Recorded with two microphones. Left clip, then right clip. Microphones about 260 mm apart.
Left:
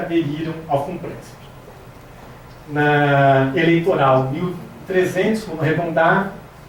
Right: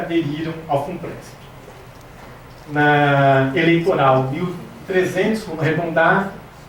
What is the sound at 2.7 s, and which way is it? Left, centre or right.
Speech, centre.